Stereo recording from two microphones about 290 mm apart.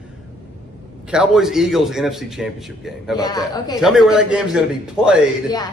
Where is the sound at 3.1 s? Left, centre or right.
Centre.